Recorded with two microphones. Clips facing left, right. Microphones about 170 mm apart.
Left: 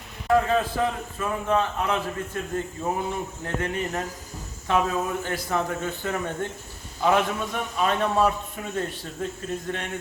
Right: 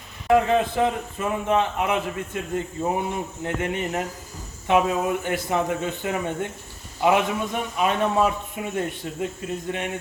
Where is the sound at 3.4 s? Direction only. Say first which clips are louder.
Right 2 dB; 15° right (ahead or behind).